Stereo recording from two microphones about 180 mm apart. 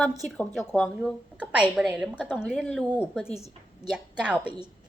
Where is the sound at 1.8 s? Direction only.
5° right (ahead or behind).